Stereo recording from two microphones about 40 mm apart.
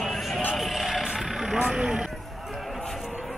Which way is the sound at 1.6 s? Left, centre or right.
Centre.